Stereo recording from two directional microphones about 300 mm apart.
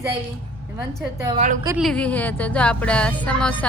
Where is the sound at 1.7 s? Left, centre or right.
Centre.